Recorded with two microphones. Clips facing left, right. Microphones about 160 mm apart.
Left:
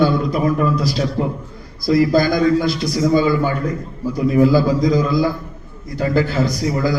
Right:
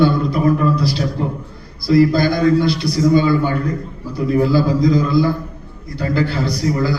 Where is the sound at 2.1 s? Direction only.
45° left (ahead or behind).